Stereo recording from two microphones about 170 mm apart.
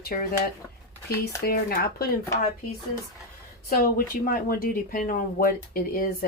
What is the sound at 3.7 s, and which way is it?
Speech, 60° left (ahead or behind).